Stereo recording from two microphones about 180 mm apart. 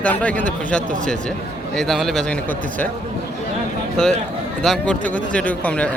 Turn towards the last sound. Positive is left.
turn(degrees=5)  # may be behind; listen again after turning